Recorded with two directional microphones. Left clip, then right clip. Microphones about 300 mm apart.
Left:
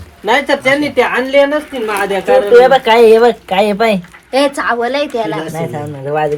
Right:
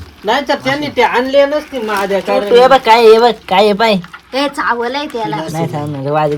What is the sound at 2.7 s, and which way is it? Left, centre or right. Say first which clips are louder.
Speech: right 1 dB; right.